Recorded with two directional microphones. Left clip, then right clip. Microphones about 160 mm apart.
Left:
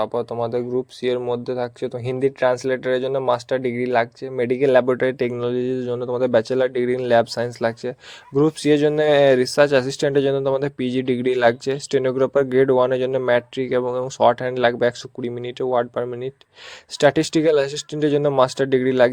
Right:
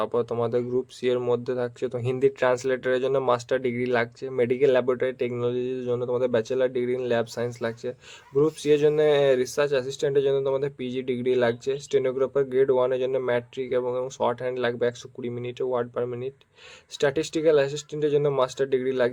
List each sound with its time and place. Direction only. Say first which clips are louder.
0.0 s speech: left 2 dB; 20° left (ahead or behind); by 19.1 s 45° left (ahead or behind)